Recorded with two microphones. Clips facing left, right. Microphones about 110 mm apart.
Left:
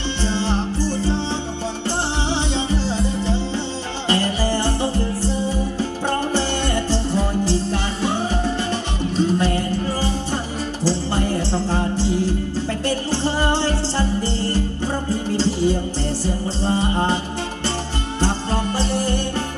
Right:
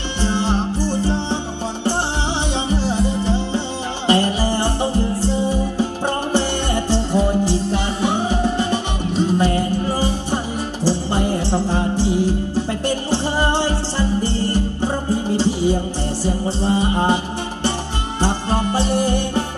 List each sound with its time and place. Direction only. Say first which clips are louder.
0.2 s music: right 3 dB; 15° right (ahead or behind)
2.5 s music: right 2 dB; 15° right (ahead or behind)
18.2 s music: right 2 dB; 15° right (ahead or behind)